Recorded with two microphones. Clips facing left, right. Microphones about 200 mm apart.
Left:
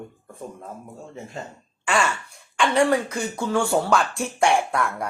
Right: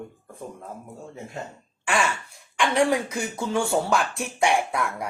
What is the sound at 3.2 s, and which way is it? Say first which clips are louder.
Speech: left 2 dB; 25° right (ahead or behind).